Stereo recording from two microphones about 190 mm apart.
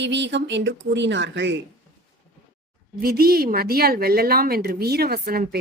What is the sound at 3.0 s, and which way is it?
A woman's voice, 50° right (ahead or behind).